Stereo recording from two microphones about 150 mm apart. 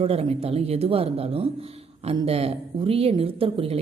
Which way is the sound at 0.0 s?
40° right (ahead or behind).